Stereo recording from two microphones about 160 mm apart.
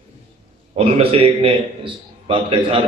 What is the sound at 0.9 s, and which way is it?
A man's voice, 35° right (ahead or behind).